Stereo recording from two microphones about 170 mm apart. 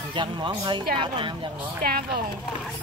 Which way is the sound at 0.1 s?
30° right (ahead or behind).